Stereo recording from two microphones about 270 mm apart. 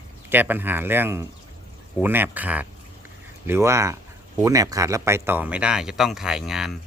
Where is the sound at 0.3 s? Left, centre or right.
Centre.